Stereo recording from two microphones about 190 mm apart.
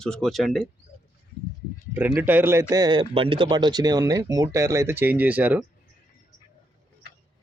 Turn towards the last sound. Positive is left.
turn(degrees=-10)  # may be behind; listen again after turning